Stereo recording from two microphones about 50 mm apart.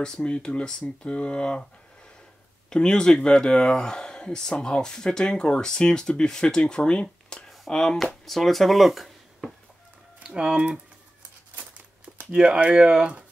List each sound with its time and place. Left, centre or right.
0.0 s speech: centre
2.7 s speech: centre
10.2 s speech: centre
12.3 s speech: centre